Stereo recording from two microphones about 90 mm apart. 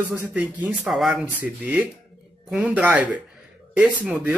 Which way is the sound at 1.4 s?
15° right (ahead or behind).